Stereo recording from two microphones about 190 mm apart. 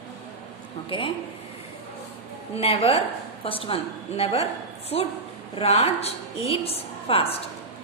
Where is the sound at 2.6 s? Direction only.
30° left (ahead or behind).